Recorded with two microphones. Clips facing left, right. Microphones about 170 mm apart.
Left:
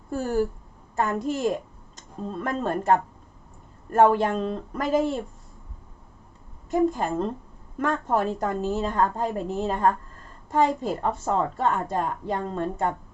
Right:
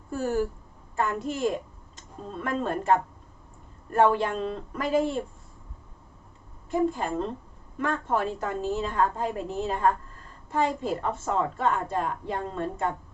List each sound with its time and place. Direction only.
0.9 s a woman's voice: 45° left (ahead or behind)
6.7 s a woman's voice: 45° left (ahead or behind)